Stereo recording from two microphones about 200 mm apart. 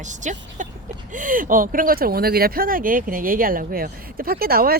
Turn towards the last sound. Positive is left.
turn(degrees=-50)  # may be behind; listen again after turning